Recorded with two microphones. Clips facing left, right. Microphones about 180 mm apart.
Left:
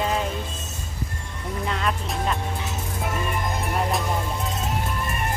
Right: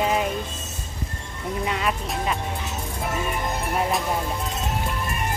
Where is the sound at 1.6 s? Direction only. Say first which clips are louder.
Even; 5° right (ahead or behind).